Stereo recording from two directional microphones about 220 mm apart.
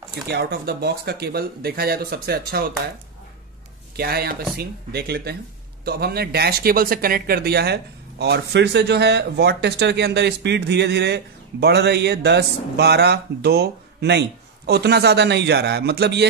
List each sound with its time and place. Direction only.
0.3 s speech: 45° right (ahead or behind)
3.9 s speech: 45° right (ahead or behind)